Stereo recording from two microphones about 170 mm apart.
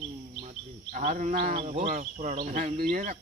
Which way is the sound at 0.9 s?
45° right (ahead or behind).